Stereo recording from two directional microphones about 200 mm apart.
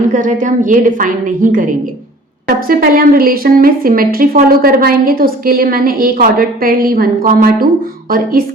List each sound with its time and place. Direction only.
0.1 s a woman's voice: 40° right (ahead or behind)